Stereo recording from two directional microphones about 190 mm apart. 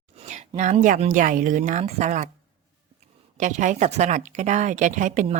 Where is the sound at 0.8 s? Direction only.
40° right (ahead or behind).